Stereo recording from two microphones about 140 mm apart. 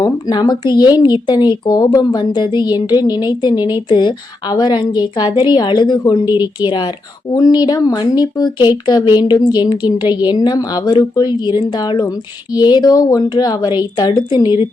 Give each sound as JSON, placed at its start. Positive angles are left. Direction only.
{"t": 0.0, "sound": "speech", "side_deg": 30}
{"t": 7.3, "sound": "a woman's voice", "side_deg": 30}